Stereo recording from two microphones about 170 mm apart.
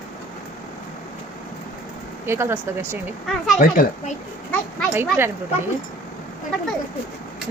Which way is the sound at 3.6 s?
50° left (ahead or behind).